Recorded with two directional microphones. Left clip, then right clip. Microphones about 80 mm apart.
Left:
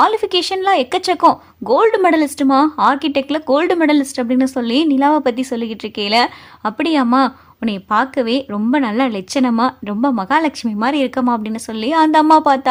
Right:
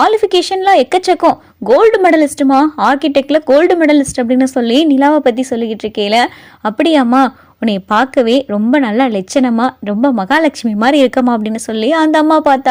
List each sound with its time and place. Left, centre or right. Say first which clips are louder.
0.0 s a woman's voice: right 4 dB; right
2.7 s a woman's voice: right 3 dB; right
3.5 s a woman's voice: right 4 dB; right
8.2 s a woman's voice: right 6 dB; right
10.8 s a woman's voice: right 7 dB; right